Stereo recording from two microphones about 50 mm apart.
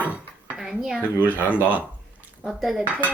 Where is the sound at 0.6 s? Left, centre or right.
Centre.